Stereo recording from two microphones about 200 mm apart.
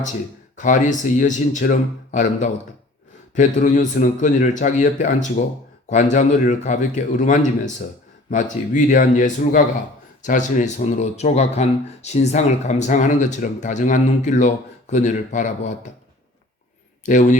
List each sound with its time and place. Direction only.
0.5 s speech: 40° left (ahead or behind)
17.0 s a man's voice: 40° left (ahead or behind)